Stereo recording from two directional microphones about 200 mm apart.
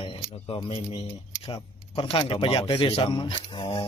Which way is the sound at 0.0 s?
25° left (ahead or behind).